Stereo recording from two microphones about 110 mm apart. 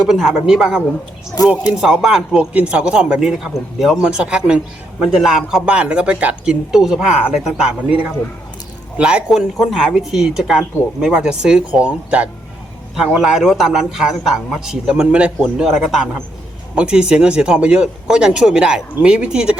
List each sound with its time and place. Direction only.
0.0 s speech: centre (ahead or behind)
1.4 s speech: 35° left (ahead or behind)
1.7 s a man's voice: 5° right (ahead or behind)